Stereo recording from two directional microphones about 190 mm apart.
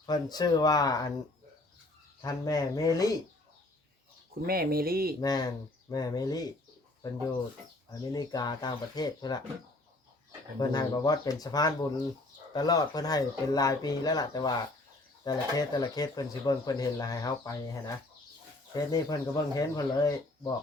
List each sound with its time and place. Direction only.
0.0 s speech: 20° left (ahead or behind)
2.2 s speech: 20° left (ahead or behind)
4.4 s speech: 50° right (ahead or behind)
5.2 s speech: 20° left (ahead or behind)
8.1 s speech: 20° left (ahead or behind)
10.6 s speech: 20° left (ahead or behind)
18.9 s speech: 20° left (ahead or behind)